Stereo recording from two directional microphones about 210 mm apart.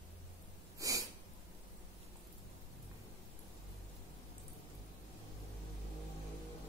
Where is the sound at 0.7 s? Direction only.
15° right (ahead or behind).